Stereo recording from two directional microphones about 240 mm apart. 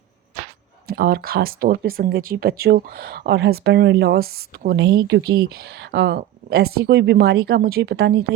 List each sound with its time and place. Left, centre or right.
0.9 s speech: right